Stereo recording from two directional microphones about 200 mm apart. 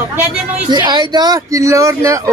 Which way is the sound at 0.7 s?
20° right (ahead or behind).